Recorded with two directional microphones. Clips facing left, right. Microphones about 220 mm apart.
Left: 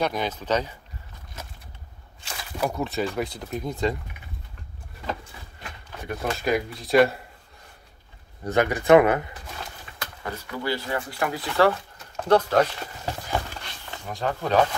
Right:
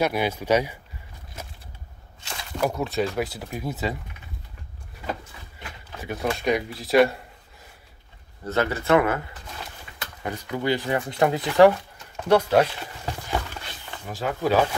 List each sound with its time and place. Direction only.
0.0 s speech: 10° right (ahead or behind)
2.2 s speech: centre (ahead or behind)
6.0 s speech: centre (ahead or behind)
8.5 s speech: 15° left (ahead or behind)
10.2 s speech: 20° right (ahead or behind)
14.1 s speech: 5° right (ahead or behind)